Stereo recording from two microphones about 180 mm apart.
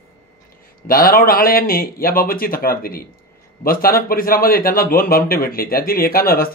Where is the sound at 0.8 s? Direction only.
55° left (ahead or behind).